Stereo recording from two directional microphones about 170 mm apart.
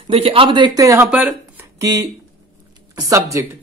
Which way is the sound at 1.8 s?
20° right (ahead or behind).